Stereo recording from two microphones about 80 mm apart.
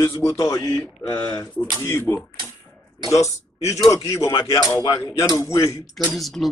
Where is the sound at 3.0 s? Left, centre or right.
Left.